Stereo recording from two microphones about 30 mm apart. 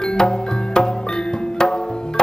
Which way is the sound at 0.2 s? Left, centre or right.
Left.